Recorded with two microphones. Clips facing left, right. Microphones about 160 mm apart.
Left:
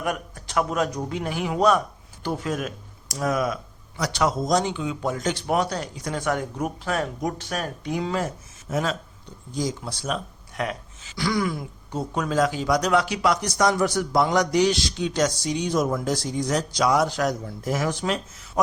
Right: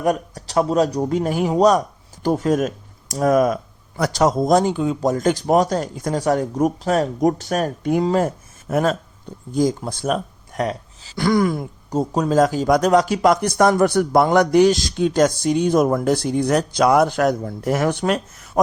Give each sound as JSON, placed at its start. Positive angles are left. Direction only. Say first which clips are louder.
{"t": 0.0, "sound": "speech", "louder": "right 8 dB", "side_deg": -35}
{"t": 11.2, "sound": "speech", "louder": "right 7 dB", "side_deg": -50}